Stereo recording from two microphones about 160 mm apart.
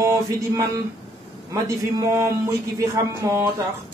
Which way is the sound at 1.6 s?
20° right (ahead or behind).